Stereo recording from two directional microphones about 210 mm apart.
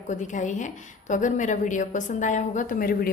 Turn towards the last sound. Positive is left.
turn(degrees=40)  # may be behind; listen again after turning